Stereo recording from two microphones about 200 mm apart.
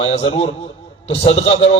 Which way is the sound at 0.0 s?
30° left (ahead or behind).